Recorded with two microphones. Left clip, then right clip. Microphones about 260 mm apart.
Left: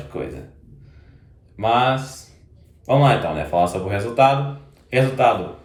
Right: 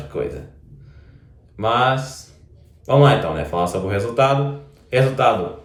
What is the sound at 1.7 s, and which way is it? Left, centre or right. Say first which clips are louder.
Speech: even; right.